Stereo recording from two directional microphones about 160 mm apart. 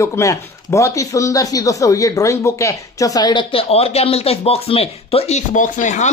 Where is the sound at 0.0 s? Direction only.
20° left (ahead or behind).